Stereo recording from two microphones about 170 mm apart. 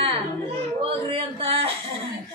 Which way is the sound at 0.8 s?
35° right (ahead or behind).